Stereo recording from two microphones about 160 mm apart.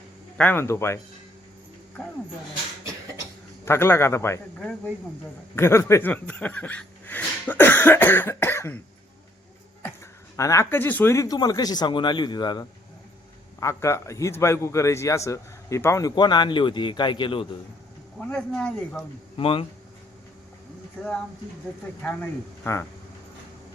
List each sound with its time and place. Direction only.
0.3 s speech: 10° left (ahead or behind)
3.7 s speech: 15° left (ahead or behind)
10.3 s a man's voice: 20° left (ahead or behind)
18.3 s speech: 5° left (ahead or behind)
19.4 s speech: 35° left (ahead or behind)
22.0 s speech: 10° left (ahead or behind)